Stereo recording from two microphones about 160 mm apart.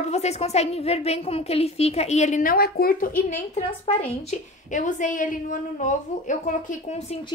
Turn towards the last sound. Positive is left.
turn(degrees=50)  # may be behind; listen again after turning